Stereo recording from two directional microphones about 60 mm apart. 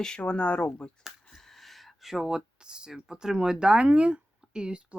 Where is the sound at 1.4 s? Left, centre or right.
Centre.